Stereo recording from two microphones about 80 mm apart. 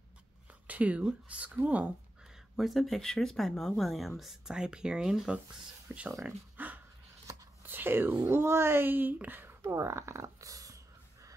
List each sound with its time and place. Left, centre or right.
0.7 s speech: centre
2.5 s speech: centre
5.9 s speech: centre
6.2 s a sound: right
7.6 s speech: right